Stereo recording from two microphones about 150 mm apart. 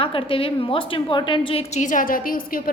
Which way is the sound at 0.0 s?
35° left (ahead or behind).